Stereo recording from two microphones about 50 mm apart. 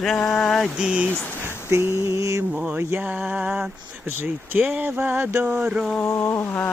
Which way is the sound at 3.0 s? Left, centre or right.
Right.